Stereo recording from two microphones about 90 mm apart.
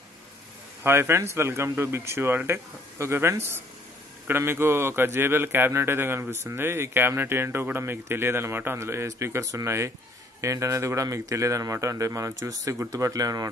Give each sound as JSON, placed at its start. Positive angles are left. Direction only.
{"t": 0.8, "sound": "a man's voice", "side_deg": -25}